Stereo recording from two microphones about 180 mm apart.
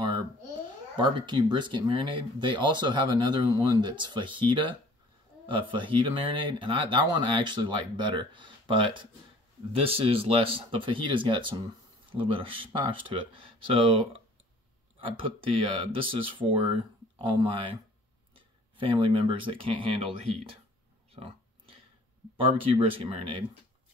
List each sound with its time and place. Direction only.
0.9 s speech: 25° right (ahead or behind)
21.1 s a sound: 30° right (ahead or behind)
22.4 s speech: 30° right (ahead or behind)